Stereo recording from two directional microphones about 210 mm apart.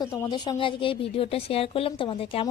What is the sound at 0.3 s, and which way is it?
Speech, 20° left (ahead or behind).